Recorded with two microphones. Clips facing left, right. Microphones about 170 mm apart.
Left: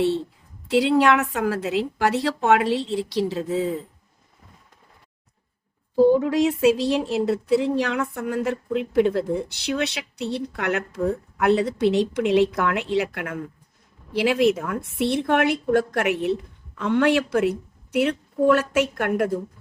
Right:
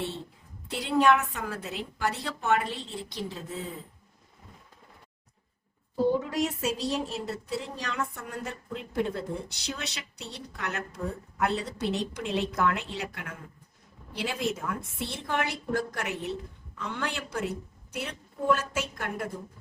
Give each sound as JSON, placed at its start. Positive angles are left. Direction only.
{"t": 0.7, "sound": "a woman's voice", "side_deg": 85}
{"t": 6.1, "sound": "speech", "side_deg": 75}
{"t": 17.9, "sound": "speech", "side_deg": 85}